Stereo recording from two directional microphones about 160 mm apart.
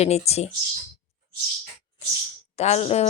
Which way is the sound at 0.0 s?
40° left (ahead or behind).